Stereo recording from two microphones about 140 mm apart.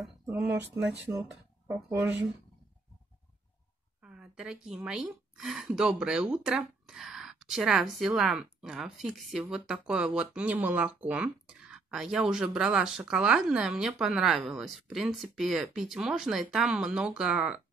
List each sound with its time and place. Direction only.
1.7 s speech: 15° right (ahead or behind)
4.0 s a woman's voice: 5° right (ahead or behind)